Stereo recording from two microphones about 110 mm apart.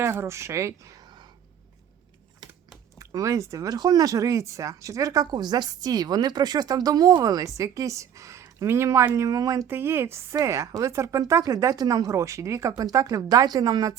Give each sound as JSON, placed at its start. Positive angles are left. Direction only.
{"t": 0.0, "sound": "speech", "side_deg": -25}
{"t": 3.0, "sound": "speech", "side_deg": -30}